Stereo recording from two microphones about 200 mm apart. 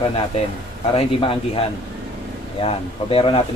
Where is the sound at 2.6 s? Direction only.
25° left (ahead or behind).